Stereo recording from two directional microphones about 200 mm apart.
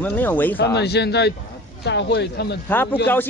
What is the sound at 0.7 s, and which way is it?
Speech, 55° left (ahead or behind).